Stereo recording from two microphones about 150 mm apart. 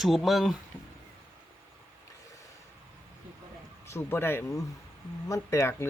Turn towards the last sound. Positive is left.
turn(degrees=20)  # may be behind; listen again after turning